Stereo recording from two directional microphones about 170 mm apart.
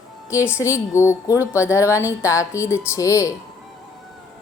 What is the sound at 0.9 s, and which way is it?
A woman's voice, 15° left (ahead or behind).